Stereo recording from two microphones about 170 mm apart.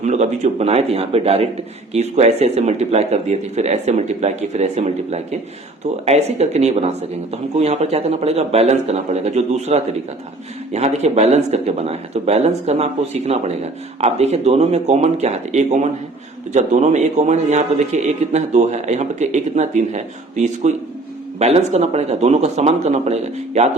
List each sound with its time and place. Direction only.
0.0 s speech: 45° right (ahead or behind)